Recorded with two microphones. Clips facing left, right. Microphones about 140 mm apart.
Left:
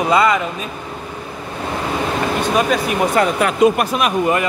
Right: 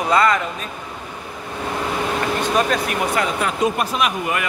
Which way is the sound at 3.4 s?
70° left (ahead or behind).